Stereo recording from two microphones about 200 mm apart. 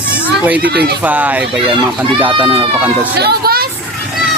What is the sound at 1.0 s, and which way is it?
Speech, 10° right (ahead or behind).